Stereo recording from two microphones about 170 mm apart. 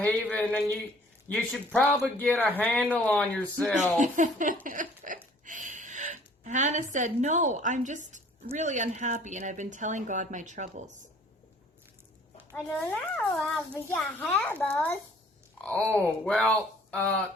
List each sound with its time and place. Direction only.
0.0 s a child's voice: 10° left (ahead or behind)
3.9 s speech: 45° right (ahead or behind)
4.6 s a sound: 50° right (ahead or behind)
5.5 s a woman's voice: 50° right (ahead or behind)
12.5 s a child's voice: 15° left (ahead or behind)